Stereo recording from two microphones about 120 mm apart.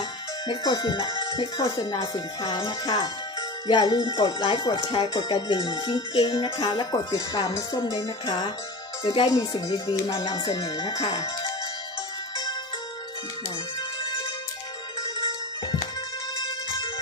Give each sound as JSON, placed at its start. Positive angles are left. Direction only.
{"t": 0.5, "sound": "speech", "side_deg": 35}
{"t": 9.3, "sound": "speech", "side_deg": 30}
{"t": 15.1, "sound": "music", "side_deg": 35}